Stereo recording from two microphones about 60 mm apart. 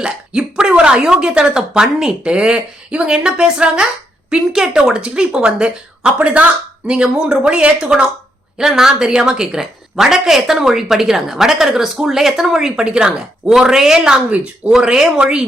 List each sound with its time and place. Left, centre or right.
0.0 s a woman's voice: centre
14.3 s speech: right
14.7 s a woman's voice: centre